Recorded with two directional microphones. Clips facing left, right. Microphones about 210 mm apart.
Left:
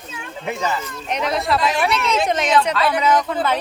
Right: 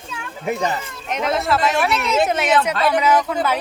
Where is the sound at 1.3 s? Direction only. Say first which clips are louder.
Right 2 dB; centre (ahead or behind).